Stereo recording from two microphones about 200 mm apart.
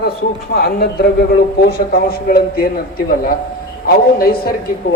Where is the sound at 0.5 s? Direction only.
50° left (ahead or behind).